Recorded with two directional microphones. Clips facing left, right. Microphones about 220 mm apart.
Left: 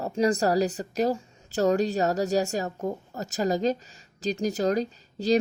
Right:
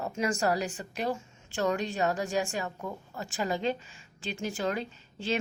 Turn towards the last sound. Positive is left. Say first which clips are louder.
# left 8 dB
turn(degrees=40)  # may be behind; listen again after turning